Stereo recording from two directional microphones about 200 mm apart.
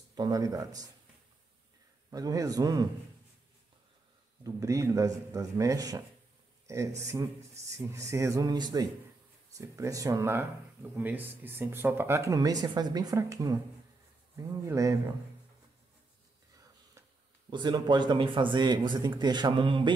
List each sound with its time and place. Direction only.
0.1 s speech: 20° right (ahead or behind)
2.0 s speech: 20° right (ahead or behind)
4.6 s speech: 15° right (ahead or behind)
17.5 s speech: 20° right (ahead or behind)